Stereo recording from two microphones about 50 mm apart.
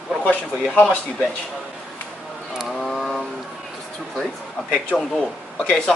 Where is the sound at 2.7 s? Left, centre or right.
Centre.